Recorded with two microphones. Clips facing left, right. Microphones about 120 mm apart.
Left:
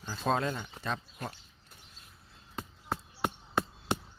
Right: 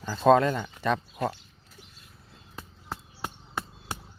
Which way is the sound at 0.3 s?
70° right (ahead or behind).